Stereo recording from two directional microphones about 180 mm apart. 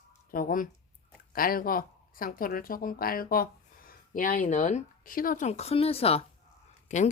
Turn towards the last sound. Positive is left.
turn(degrees=40)  # may be behind; listen again after turning